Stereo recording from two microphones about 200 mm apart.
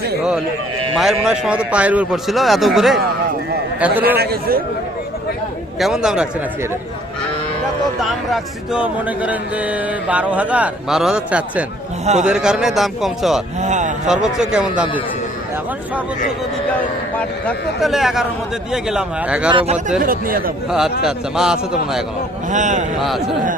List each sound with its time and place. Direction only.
0.9 s a man's voice: centre (ahead or behind)
4.2 s a man's voice: 50° right (ahead or behind)
5.8 s a man's voice: centre (ahead or behind)
8.0 s a man's voice: centre (ahead or behind)
13.6 s speech: 35° right (ahead or behind)
14.1 s a man's voice: centre (ahead or behind)
17.2 s a man's voice: 5° left (ahead or behind)
19.5 s speech: 25° right (ahead or behind)
20.0 s a man's voice: 45° right (ahead or behind)
20.7 s a man's voice: 5° right (ahead or behind)
22.5 s speech: 40° right (ahead or behind)
23.0 s a man's voice: centre (ahead or behind)